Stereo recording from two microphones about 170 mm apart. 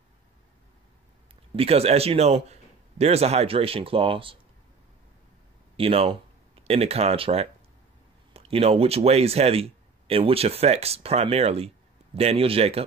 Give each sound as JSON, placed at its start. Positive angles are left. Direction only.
{"t": 1.6, "sound": "speech", "side_deg": -35}
{"t": 5.8, "sound": "speech", "side_deg": -35}